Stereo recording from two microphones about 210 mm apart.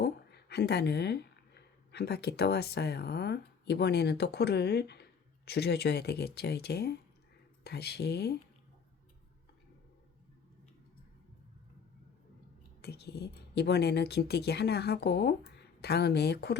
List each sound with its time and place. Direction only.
0.0 s speech: 50° left (ahead or behind)
12.8 s speech: 50° left (ahead or behind)